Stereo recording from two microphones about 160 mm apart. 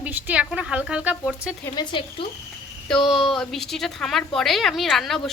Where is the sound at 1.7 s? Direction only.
30° left (ahead or behind).